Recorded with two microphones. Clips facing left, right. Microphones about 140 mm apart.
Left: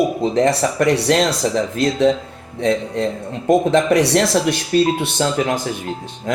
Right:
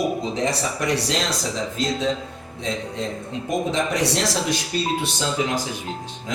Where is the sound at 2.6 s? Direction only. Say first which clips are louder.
Left 9 dB; 60° left (ahead or behind).